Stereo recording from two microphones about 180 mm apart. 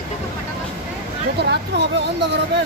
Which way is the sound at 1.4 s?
70° right (ahead or behind).